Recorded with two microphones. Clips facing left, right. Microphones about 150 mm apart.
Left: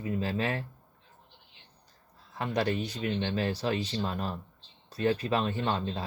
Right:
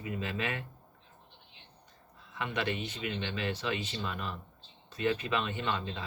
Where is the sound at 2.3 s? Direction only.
35° left (ahead or behind).